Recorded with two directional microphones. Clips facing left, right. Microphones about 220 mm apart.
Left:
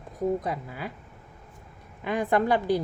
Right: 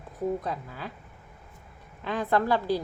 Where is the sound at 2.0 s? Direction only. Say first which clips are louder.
Left 2 dB; 15° left (ahead or behind).